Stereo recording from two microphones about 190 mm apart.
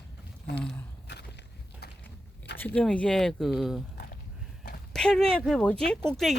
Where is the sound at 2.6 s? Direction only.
10° left (ahead or behind).